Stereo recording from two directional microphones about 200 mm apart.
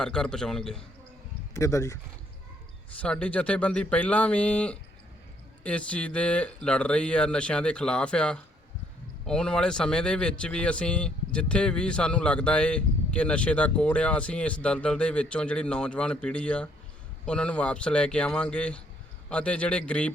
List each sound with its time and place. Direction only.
0.0 s speech: 5° left (ahead or behind)
1.5 s speech: 15° left (ahead or behind)
3.0 s speech: 5° left (ahead or behind)